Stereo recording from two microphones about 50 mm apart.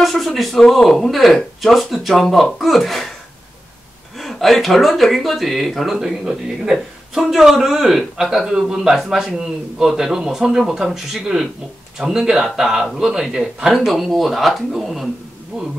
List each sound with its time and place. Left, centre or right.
0.0 s speech: centre
4.2 s a man's voice: centre